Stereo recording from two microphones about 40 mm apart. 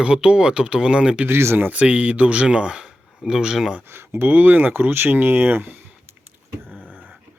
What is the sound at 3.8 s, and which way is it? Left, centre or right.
Speech, right.